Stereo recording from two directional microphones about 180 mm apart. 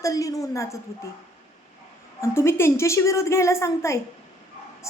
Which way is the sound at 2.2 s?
15° left (ahead or behind).